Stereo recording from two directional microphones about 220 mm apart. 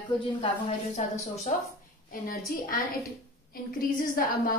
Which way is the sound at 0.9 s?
30° left (ahead or behind).